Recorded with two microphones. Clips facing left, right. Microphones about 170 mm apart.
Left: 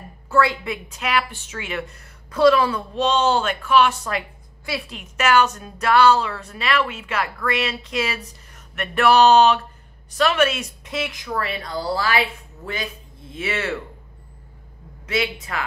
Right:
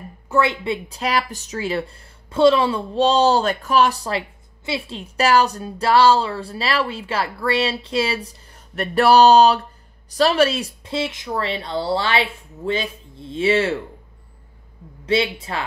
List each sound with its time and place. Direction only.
0.3 s a woman's voice: 25° right (ahead or behind)
15.0 s a woman's voice: 30° right (ahead or behind)